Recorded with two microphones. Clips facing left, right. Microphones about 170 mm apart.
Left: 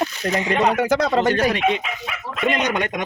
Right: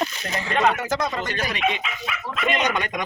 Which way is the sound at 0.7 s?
70° left (ahead or behind).